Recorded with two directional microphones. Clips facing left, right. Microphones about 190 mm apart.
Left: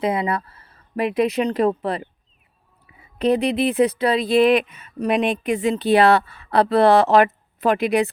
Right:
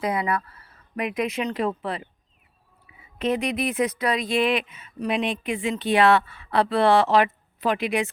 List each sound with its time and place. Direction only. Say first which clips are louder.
0.0 s a woman's voice: left 3 dB; 25° left (ahead or behind); by 2.0 s 40° left (ahead or behind)
3.2 s speech: left 6 dB; 35° left (ahead or behind)